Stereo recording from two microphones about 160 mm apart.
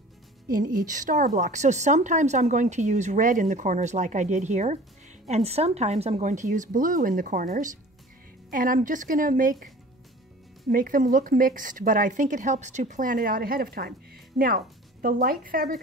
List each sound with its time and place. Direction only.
0.5 s a woman's voice: 60° right (ahead or behind)
10.7 s speech: 60° right (ahead or behind)